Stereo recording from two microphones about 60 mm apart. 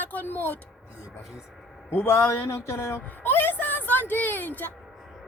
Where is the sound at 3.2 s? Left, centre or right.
Left.